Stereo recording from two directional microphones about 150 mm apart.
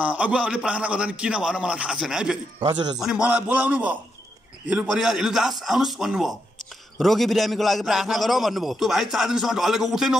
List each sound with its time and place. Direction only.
0.0 s a man's voice: 10° right (ahead or behind)
2.7 s a man's voice: 30° right (ahead or behind)
3.0 s a man's voice: 5° right (ahead or behind)